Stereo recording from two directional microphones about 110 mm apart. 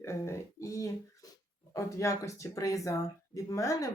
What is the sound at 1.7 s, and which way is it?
Speech, 30° left (ahead or behind).